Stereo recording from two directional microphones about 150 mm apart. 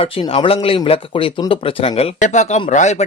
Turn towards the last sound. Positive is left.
turn(degrees=50)  # may be behind; listen again after turning